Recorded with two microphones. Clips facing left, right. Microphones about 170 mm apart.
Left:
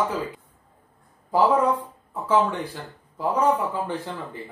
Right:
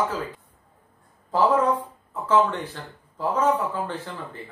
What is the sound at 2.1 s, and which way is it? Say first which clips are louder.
Speech: right 1 dB; 10° left (ahead or behind).